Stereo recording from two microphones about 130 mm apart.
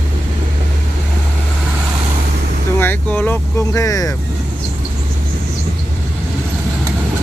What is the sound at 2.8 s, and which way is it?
Vehicle, 15° left (ahead or behind).